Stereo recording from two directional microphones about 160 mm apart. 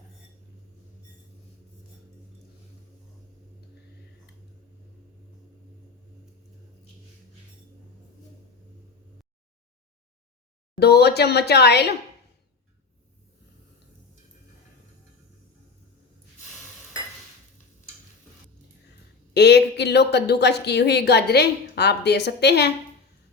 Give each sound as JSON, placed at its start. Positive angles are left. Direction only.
{"t": 10.8, "sound": "a woman's voice", "side_deg": 90}
{"t": 19.3, "sound": "a woman's voice", "side_deg": 90}